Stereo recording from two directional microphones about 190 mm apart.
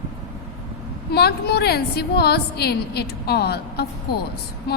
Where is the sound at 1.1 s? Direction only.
55° left (ahead or behind).